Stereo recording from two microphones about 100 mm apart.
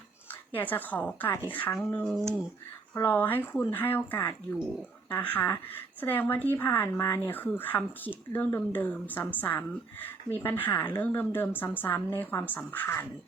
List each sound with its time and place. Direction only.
0.3 s a woman's voice: 20° left (ahead or behind)